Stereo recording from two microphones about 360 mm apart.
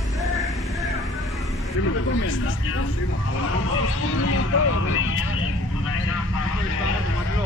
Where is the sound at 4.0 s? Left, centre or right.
Left.